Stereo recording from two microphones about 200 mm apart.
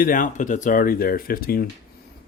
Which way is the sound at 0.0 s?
40° left (ahead or behind).